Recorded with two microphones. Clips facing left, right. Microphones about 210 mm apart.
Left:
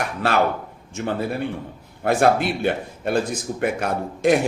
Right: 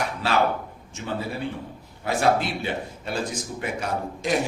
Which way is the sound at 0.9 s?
55° left (ahead or behind).